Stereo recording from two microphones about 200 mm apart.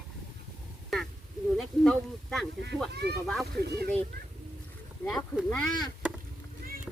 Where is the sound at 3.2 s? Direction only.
Centre (ahead or behind).